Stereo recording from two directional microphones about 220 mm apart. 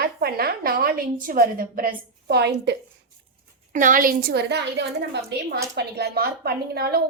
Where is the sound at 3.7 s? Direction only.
35° right (ahead or behind).